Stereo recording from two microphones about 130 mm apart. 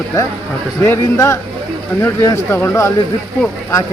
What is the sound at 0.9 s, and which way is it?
Speech, 20° left (ahead or behind).